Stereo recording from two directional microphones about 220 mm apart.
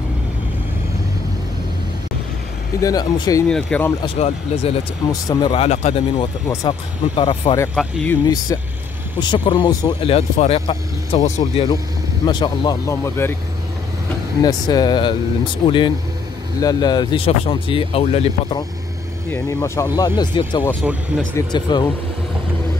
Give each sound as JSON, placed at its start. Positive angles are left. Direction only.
{"t": 2.8, "sound": "speech", "side_deg": 15}
{"t": 3.4, "sound": "speech", "side_deg": 5}
{"t": 4.0, "sound": "speech", "side_deg": 25}
{"t": 6.4, "sound": "speech", "side_deg": 15}
{"t": 7.7, "sound": "speech", "side_deg": 5}
{"t": 8.5, "sound": "speech", "side_deg": 15}
{"t": 14.4, "sound": "speech", "side_deg": 20}
{"t": 19.3, "sound": "speech", "side_deg": 10}